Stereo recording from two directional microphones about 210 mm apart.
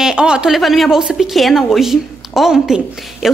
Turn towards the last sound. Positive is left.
turn(degrees=0)  # may be behind; listen again after turning